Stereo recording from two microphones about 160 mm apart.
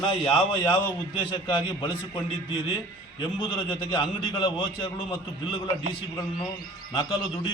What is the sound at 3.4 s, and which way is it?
A man's voice, 30° left (ahead or behind).